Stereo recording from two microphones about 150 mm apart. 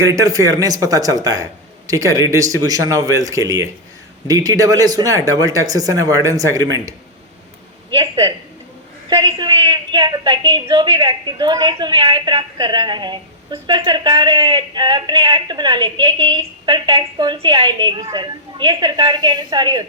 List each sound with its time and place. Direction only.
0.0 s speech: 20° right (ahead or behind)
7.9 s a woman's voice: 30° right (ahead or behind)